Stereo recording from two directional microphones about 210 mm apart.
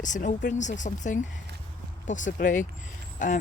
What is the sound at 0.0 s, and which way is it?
Speech, 35° left (ahead or behind).